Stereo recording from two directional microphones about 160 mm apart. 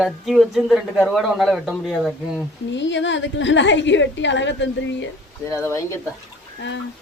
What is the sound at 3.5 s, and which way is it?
A woman's voice, 90° left.